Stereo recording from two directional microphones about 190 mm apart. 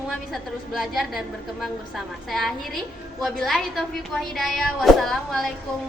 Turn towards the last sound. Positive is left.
turn(degrees=0)  # may be behind; listen again after turning